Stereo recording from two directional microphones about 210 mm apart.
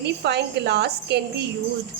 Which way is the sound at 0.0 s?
50° right (ahead or behind).